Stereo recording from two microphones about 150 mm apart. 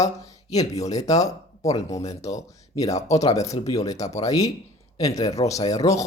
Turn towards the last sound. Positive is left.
turn(degrees=25)  # may be behind; listen again after turning